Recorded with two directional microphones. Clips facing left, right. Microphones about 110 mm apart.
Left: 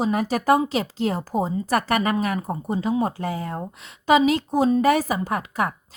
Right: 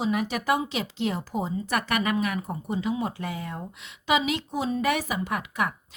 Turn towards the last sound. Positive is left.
turn(degrees=35)  # may be behind; listen again after turning